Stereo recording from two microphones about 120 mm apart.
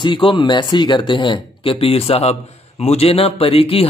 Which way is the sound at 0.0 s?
45° left (ahead or behind).